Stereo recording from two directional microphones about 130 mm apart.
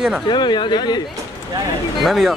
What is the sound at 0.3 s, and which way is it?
Speech, 35° left (ahead or behind).